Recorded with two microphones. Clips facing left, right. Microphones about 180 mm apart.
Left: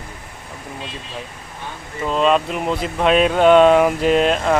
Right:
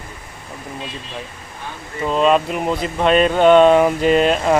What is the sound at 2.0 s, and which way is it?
Speech, centre (ahead or behind).